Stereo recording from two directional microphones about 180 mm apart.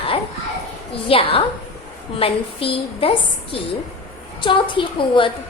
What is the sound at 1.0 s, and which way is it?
A woman's voice, 30° left (ahead or behind).